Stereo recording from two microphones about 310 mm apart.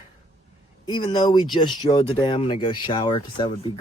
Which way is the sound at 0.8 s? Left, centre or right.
Centre.